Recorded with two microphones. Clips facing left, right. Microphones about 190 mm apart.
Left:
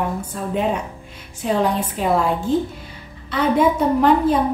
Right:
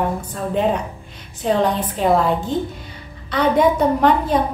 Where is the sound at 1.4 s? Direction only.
5° left (ahead or behind).